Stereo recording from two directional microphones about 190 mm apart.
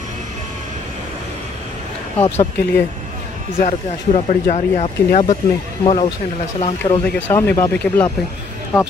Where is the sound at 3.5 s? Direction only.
35° left (ahead or behind).